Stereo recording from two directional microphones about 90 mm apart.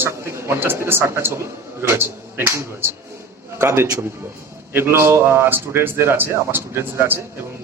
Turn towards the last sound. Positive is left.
turn(degrees=-25)  # may be behind; listen again after turning